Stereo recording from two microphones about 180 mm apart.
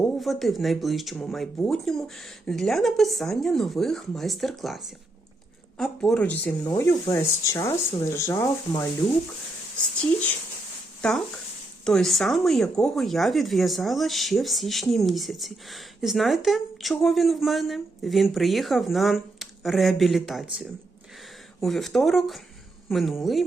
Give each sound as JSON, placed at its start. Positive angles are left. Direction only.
{"t": 0.2, "sound": "speech", "side_deg": 0}
{"t": 11.0, "sound": "speech", "side_deg": 5}